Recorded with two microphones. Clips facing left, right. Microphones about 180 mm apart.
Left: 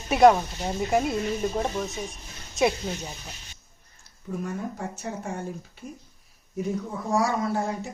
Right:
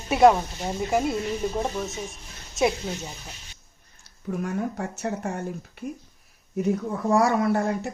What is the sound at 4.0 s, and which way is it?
Speech, 75° right (ahead or behind).